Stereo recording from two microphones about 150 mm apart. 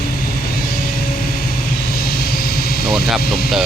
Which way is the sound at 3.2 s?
90° left.